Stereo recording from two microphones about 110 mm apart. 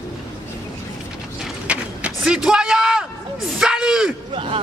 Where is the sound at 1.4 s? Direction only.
5° right (ahead or behind).